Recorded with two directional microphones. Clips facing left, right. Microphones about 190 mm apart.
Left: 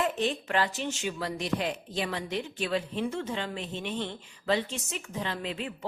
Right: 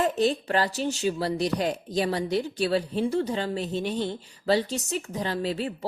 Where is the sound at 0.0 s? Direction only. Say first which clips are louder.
Right 5 dB; 40° right (ahead or behind).